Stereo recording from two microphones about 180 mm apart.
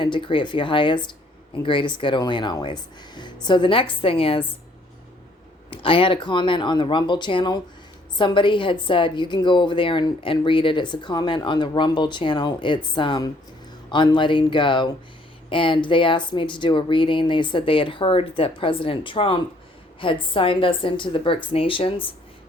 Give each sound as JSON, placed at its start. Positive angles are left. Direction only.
{"t": 0.0, "sound": "a woman's voice", "side_deg": 25}
{"t": 5.7, "sound": "a woman's voice", "side_deg": 30}